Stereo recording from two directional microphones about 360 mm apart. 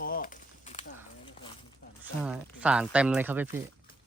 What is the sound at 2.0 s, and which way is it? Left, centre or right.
Speech, centre.